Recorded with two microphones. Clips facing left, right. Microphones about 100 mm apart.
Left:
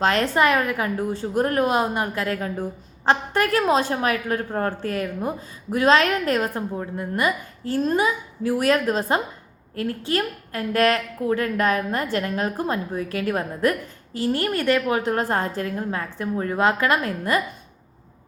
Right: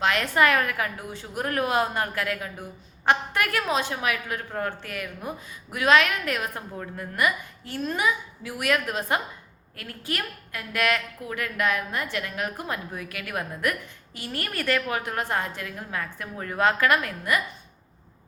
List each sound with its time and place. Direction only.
0.0 s a woman's voice: 35° left (ahead or behind)
2.2 s a woman's voice: 35° left (ahead or behind)